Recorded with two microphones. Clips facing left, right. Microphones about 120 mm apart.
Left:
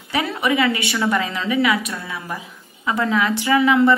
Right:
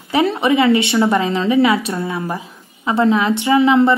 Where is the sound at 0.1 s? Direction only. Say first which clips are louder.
Right 6 dB; 25° right (ahead or behind).